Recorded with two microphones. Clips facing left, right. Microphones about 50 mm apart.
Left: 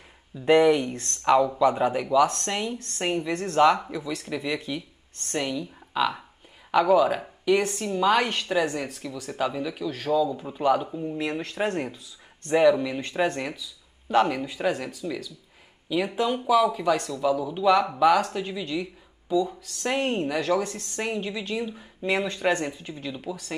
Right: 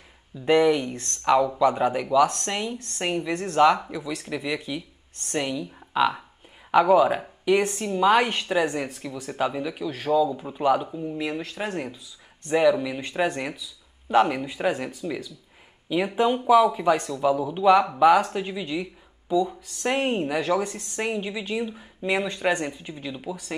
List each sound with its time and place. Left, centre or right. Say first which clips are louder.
0.4 s speech: left 1 dB; centre
3.2 s speech: even; right
3.8 s speech: even; centre